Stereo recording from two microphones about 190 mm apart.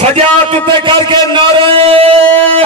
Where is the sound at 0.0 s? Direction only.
35° right (ahead or behind).